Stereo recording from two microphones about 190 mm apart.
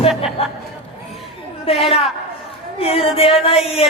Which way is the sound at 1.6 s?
30° left (ahead or behind).